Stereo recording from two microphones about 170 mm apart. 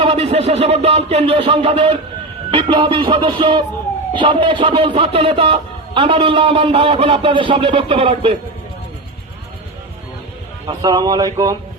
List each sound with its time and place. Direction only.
0.0 s speech: 35° right (ahead or behind)
2.5 s music: 30° right (ahead or behind)
4.1 s speech: 30° right (ahead or behind)
10.7 s music: 25° right (ahead or behind)